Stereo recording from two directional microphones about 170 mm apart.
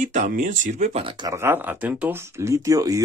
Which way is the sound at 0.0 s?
50° right (ahead or behind).